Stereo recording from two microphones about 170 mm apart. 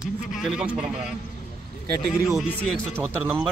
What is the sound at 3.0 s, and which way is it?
Speech, 10° right (ahead or behind).